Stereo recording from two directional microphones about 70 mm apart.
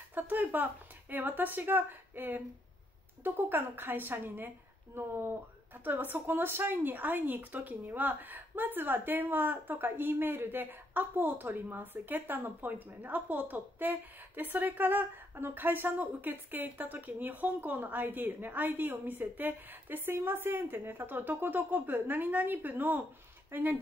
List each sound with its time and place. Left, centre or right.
0.1 s speech: right